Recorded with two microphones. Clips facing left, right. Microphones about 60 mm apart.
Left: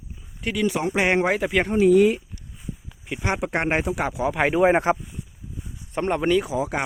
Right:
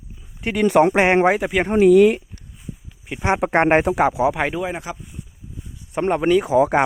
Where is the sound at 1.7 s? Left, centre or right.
Right.